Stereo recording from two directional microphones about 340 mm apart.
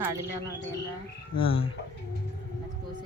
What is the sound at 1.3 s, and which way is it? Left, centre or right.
Speech, centre.